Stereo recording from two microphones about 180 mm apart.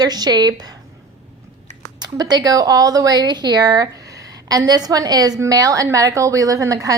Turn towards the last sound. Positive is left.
turn(degrees=-15)  # may be behind; listen again after turning